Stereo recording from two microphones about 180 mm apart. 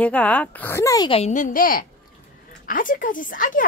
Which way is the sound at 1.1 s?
40° left (ahead or behind).